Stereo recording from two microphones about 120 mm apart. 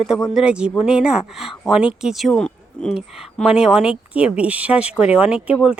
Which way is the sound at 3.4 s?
5° right (ahead or behind).